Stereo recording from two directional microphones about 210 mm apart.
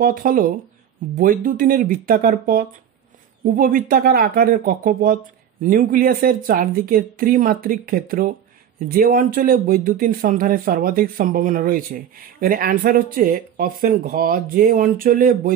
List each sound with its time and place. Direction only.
0.0 s speech: 40° right (ahead or behind)